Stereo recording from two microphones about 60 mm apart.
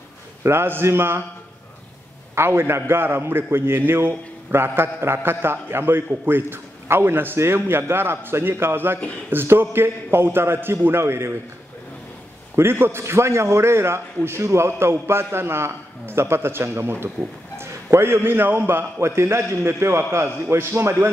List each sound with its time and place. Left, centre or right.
0.4 s a man's voice: right
2.3 s a man's voice: right
12.5 s a man's voice: right